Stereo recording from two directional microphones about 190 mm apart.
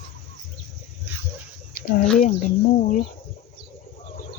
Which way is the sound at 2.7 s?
40° left (ahead or behind).